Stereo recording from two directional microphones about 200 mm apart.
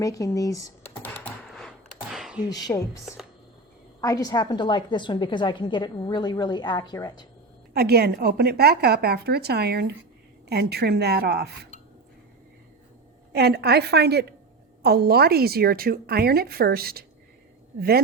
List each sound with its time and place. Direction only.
0.0 s typing: 15° left (ahead or behind); by 2.4 s 5° right (ahead or behind)
2.5 s a woman's voice: 20° left (ahead or behind)
4.0 s a woman's voice: 20° left (ahead or behind)
7.7 s a woman's voice: 50° right (ahead or behind)
13.3 s a woman's voice: 55° right (ahead or behind)